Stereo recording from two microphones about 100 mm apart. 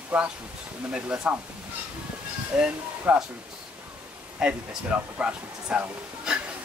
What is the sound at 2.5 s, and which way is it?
Speech, 10° right (ahead or behind).